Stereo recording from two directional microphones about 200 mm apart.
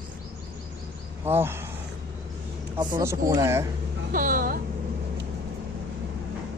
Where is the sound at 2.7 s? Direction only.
20° right (ahead or behind).